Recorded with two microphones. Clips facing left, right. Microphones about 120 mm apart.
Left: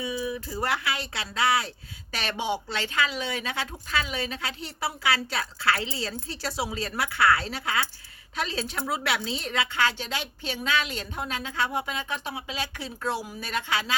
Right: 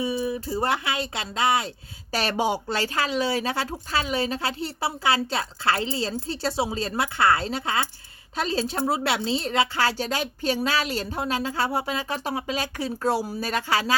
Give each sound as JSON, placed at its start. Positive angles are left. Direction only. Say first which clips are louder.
{"t": 0.0, "sound": "speech", "louder": "right 4 dB", "side_deg": -30}
{"t": 2.1, "sound": "speech", "louder": "right 5 dB", "side_deg": -40}